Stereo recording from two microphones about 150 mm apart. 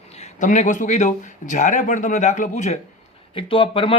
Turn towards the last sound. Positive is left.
turn(degrees=35)  # may be behind; listen again after turning